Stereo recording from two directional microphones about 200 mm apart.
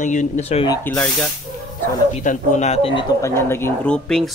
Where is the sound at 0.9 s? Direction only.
5° left (ahead or behind).